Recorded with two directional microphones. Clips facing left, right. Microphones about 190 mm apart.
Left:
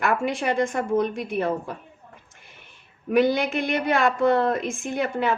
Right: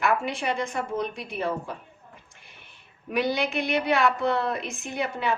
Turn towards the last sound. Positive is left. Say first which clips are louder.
# left 4 dB
turn(degrees=50)  # may be behind; listen again after turning